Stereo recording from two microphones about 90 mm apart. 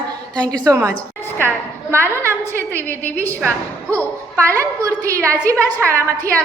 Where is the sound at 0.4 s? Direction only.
45° right (ahead or behind).